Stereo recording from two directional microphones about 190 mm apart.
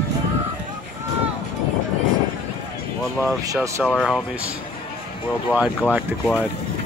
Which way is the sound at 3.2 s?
15° right (ahead or behind).